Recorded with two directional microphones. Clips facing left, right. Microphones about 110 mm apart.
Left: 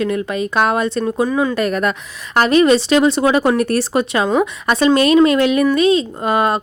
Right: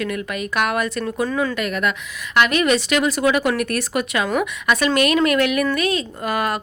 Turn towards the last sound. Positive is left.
turn(degrees=25)  # may be behind; listen again after turning